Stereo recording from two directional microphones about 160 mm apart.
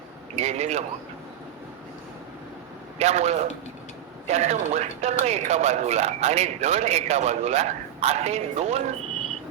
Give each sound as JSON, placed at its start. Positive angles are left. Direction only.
{"t": 0.3, "sound": "speech", "side_deg": -45}
{"t": 3.0, "sound": "speech", "side_deg": -45}